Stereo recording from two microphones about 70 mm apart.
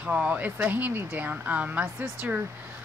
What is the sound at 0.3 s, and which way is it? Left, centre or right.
Speech, right.